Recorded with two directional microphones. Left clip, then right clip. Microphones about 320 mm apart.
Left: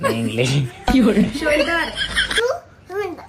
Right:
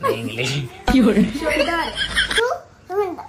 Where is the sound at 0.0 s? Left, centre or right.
Centre.